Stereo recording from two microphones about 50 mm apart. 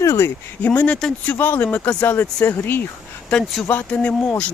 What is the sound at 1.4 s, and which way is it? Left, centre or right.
Speech, left.